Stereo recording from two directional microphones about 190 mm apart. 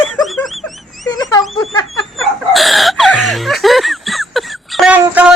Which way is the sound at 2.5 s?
Centre (ahead or behind).